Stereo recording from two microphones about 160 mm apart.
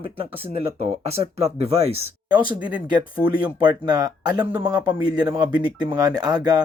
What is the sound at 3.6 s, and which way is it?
Speech, 25° right (ahead or behind).